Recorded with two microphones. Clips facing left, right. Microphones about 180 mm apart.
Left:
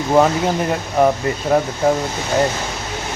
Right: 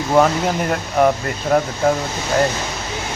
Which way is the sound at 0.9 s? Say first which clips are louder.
Left 1 dB; 5° left (ahead or behind).